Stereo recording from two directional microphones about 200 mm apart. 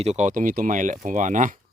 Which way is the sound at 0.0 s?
35° right (ahead or behind).